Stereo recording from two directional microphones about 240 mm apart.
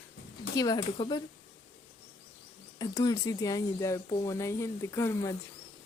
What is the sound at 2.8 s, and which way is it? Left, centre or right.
Speech, centre.